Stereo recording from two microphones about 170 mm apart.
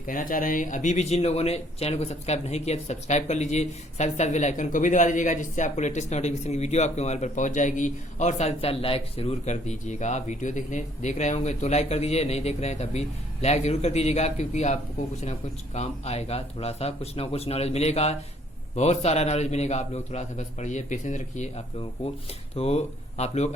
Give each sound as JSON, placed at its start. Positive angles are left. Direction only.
{"t": 0.0, "sound": "a man's voice", "side_deg": 55}